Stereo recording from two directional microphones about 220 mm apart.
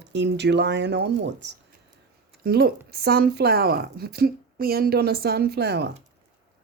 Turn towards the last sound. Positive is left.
turn(degrees=-50)  # may be behind; listen again after turning